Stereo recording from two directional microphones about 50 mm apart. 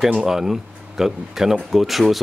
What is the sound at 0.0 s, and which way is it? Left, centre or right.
Speech, centre.